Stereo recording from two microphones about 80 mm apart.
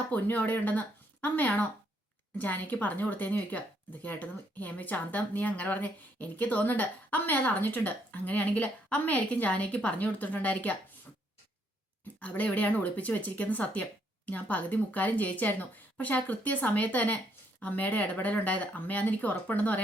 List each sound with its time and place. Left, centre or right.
0.1 s speech: left
12.2 s speech: centre